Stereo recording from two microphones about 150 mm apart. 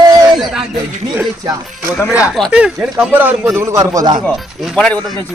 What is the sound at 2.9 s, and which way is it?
Speech, 10° right (ahead or behind).